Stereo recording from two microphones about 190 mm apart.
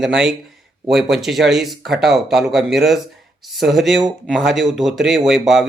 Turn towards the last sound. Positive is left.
turn(degrees=0)  # may be behind; listen again after turning